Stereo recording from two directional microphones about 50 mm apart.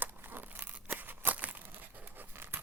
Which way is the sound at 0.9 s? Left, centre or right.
Right.